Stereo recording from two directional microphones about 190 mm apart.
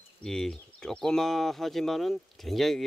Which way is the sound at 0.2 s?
5° left (ahead or behind).